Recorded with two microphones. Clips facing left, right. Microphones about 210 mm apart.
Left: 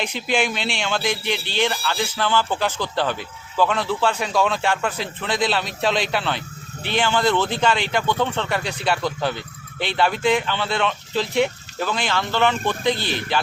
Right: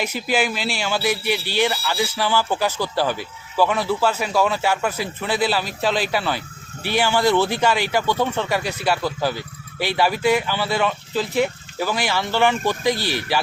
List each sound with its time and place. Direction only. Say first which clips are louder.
0.0 s speech: right 1 dB; 5° right (ahead or behind)
13.0 s speech: right 1 dB; 20° left (ahead or behind)